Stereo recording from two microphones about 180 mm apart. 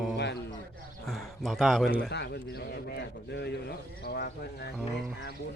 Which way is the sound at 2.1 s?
65° left (ahead or behind).